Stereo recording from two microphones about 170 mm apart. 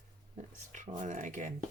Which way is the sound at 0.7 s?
45° right (ahead or behind).